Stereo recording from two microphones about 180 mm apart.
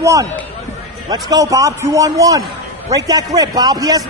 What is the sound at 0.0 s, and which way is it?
A man's voice, 15° right (ahead or behind).